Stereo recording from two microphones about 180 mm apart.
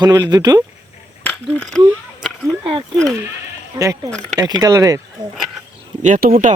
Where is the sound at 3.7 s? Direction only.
15° right (ahead or behind).